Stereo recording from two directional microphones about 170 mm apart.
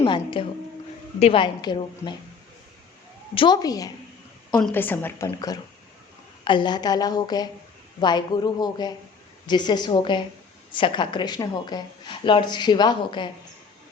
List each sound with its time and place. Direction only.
0.0 s speech: 30° left (ahead or behind)
3.3 s speech: 25° left (ahead or behind)
4.6 s a woman's voice: 10° left (ahead or behind); by 13.3 s 30° left (ahead or behind)